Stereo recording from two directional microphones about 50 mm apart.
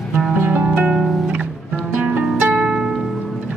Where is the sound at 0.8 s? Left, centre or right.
Centre.